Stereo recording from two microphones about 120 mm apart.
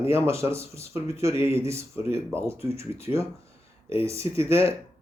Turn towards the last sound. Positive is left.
turn(degrees=-25)  # may be behind; listen again after turning